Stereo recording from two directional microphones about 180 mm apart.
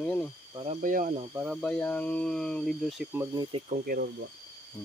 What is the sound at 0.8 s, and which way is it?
Speech, 50° right (ahead or behind).